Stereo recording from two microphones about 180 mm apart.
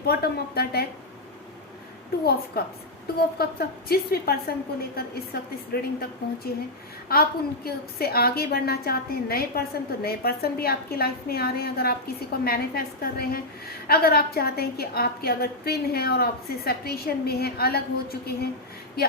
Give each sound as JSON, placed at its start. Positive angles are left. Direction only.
{"t": 0.0, "sound": "a woman's voice", "side_deg": 60}
{"t": 2.5, "sound": "a woman's voice", "side_deg": 60}